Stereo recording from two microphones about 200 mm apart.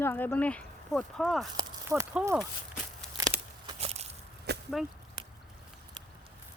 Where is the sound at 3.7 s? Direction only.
35° right (ahead or behind).